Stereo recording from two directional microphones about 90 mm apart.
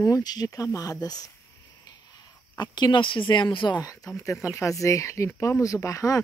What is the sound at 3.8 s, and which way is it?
Speech, 35° left (ahead or behind).